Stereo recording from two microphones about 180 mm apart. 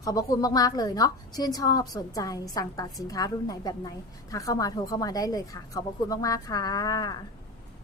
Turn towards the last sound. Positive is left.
turn(degrees=25)  # may be behind; listen again after turning